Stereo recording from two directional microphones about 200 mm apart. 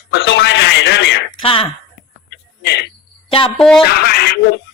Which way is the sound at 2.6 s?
55° left (ahead or behind).